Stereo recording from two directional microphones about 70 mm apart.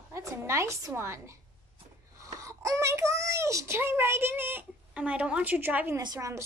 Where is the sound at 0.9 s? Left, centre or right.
Right.